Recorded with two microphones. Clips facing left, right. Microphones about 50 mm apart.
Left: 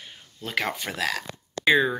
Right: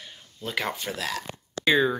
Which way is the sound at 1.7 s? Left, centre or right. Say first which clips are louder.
Left 1 dB; centre.